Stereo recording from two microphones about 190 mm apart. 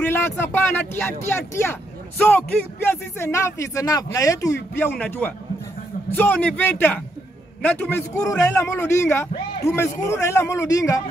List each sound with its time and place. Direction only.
0.0 s speech: 10° left (ahead or behind)